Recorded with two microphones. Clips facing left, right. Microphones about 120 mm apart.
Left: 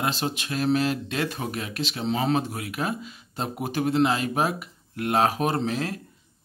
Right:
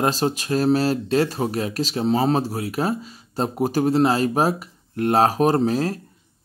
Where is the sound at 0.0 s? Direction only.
40° right (ahead or behind).